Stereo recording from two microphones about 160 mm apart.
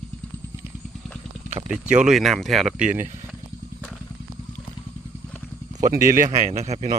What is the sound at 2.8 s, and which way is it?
Speech, 50° right (ahead or behind).